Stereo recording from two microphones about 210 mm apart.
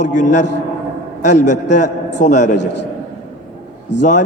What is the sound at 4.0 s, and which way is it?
Speech, 35° left (ahead or behind).